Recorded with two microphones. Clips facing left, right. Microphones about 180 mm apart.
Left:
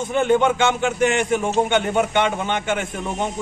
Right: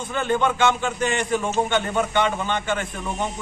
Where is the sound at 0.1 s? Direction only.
20° left (ahead or behind).